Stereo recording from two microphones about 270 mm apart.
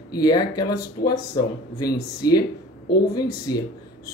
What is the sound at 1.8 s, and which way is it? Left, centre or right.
Speech, centre.